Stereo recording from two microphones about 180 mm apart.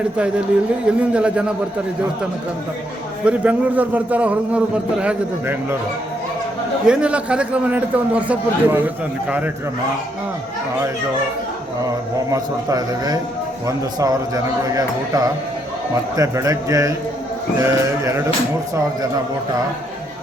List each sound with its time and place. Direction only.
0.9 s a man's voice: 5° right (ahead or behind)
3.2 s a man's voice: 10° right (ahead or behind)
6.8 s a man's voice: 5° right (ahead or behind)
12.3 s a man's voice: 20° right (ahead or behind)